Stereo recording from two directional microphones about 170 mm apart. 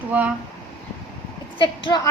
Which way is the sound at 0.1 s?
10° right (ahead or behind).